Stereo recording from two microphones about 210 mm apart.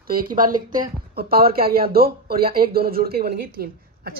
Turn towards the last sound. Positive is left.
turn(degrees=-45)  # may be behind; listen again after turning